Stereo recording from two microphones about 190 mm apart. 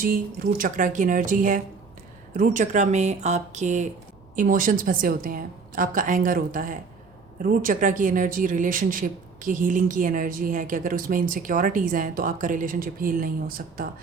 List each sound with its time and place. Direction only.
0.0 s speech: 45° right (ahead or behind)